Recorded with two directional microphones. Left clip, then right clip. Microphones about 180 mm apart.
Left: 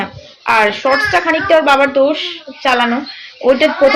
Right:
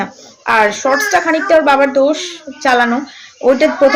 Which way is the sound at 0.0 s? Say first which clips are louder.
Even; 10° right (ahead or behind).